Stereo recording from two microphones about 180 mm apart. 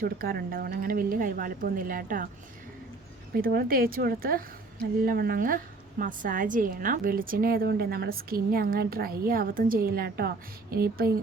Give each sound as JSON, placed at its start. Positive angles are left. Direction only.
{"t": 0.0, "sound": "a woman's voice", "side_deg": -55}
{"t": 3.3, "sound": "a woman's voice", "side_deg": -55}